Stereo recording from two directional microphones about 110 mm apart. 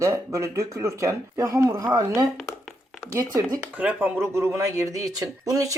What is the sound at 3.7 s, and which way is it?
Speech, 15° right (ahead or behind).